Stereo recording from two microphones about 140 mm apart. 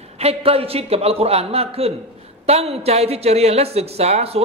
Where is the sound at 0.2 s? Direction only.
45° right (ahead or behind).